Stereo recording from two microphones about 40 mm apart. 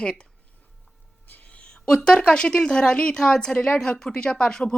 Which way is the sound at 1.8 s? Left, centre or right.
Left.